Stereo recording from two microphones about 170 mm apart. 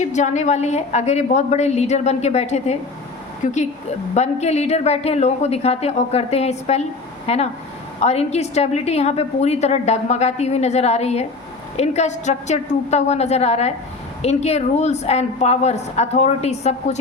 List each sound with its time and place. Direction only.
0.0 s a woman's voice: 45° left (ahead or behind)